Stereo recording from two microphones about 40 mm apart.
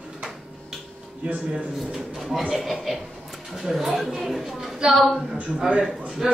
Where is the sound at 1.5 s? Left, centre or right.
Centre.